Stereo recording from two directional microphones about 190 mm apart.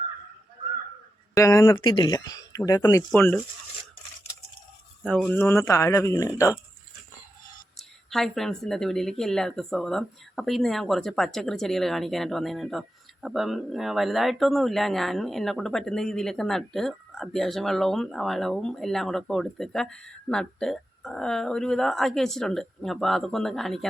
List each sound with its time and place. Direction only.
1.4 s speech: 15° left (ahead or behind)
5.0 s speech: 5° left (ahead or behind)
7.8 s speech: centre (ahead or behind)